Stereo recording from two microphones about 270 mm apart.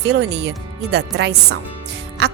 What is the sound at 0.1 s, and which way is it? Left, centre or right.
Speech, right.